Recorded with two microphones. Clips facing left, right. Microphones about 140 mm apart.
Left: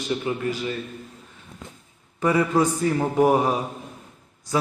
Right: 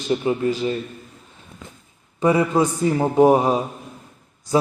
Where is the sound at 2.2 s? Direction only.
20° right (ahead or behind).